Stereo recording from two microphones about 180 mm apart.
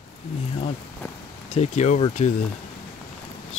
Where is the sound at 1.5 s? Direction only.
40° left (ahead or behind).